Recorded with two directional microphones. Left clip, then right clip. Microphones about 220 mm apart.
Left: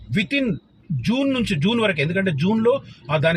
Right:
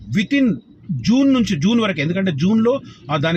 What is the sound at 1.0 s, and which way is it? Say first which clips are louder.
Speech: right 5 dB; 10° right (ahead or behind).